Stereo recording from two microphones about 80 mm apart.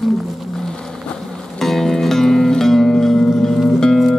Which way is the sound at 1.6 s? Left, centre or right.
Centre.